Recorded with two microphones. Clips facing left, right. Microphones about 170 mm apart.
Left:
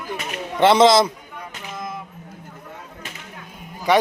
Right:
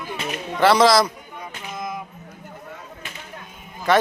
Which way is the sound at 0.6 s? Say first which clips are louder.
Left 2 dB; 25° left (ahead or behind).